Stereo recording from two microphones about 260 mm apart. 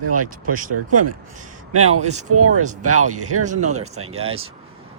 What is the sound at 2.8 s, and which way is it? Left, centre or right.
Speech, right.